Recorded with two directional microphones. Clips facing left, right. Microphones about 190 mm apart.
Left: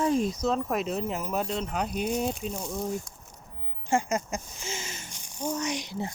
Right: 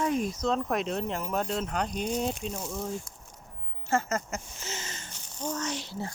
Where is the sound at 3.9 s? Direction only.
15° left (ahead or behind).